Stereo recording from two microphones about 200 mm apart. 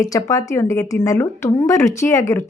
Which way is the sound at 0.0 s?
15° left (ahead or behind).